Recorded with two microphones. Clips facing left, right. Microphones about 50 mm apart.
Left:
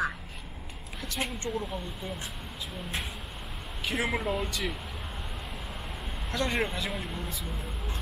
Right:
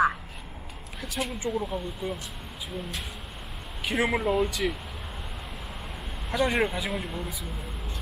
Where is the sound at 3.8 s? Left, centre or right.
Centre.